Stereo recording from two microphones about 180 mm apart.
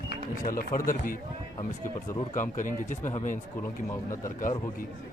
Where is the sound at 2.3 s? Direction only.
45° left (ahead or behind).